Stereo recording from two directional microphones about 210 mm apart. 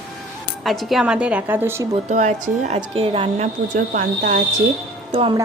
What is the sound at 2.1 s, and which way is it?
Speech, 35° right (ahead or behind).